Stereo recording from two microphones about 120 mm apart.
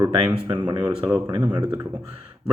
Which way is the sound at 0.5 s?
40° right (ahead or behind).